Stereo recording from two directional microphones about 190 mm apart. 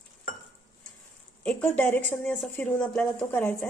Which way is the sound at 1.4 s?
5° left (ahead or behind).